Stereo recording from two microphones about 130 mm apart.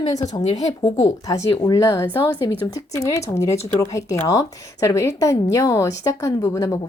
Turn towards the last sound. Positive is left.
turn(degrees=25)  # may be behind; listen again after turning